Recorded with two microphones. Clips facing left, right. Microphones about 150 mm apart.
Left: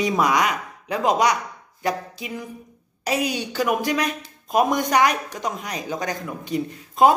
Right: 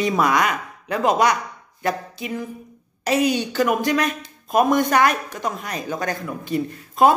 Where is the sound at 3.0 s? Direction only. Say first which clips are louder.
Right 5 dB; 10° left (ahead or behind).